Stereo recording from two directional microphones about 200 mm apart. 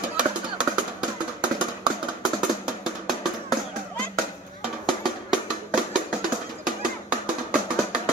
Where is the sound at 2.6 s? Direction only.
Centre (ahead or behind).